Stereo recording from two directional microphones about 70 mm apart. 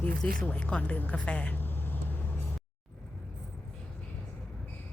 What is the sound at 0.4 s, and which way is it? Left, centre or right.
Speech, centre.